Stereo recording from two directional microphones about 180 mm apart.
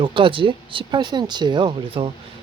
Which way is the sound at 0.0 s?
30° right (ahead or behind).